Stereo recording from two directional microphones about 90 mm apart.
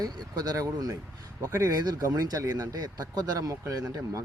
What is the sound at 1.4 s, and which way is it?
Speech, 35° right (ahead or behind).